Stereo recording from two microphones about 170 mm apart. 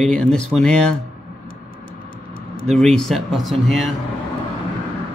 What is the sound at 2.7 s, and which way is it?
Speech, 5° left (ahead or behind).